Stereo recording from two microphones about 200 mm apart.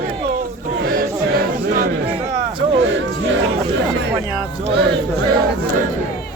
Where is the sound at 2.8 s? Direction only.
65° right (ahead or behind).